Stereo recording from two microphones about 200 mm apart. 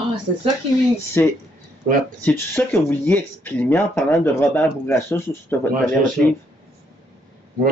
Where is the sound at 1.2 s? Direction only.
10° left (ahead or behind).